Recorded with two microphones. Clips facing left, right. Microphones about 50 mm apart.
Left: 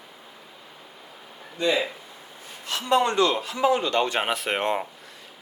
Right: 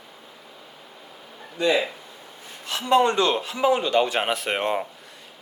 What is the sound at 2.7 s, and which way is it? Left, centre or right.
Speech, right.